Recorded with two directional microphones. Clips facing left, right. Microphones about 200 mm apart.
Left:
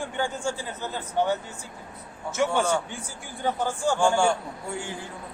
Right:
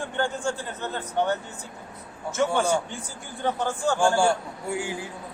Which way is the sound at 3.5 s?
10° left (ahead or behind).